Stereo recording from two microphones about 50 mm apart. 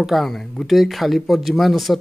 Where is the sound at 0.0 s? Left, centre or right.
Centre.